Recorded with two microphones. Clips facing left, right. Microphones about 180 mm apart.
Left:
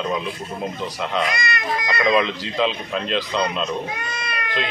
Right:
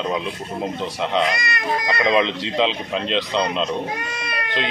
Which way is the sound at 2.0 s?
25° right (ahead or behind).